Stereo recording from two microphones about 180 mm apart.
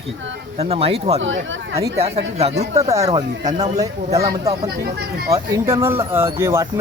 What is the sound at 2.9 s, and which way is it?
Speech, 20° right (ahead or behind).